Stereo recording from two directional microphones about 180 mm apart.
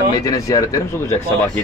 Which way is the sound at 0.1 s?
20° left (ahead or behind).